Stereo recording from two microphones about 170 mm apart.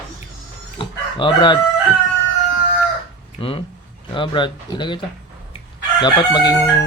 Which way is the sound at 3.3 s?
30° left (ahead or behind).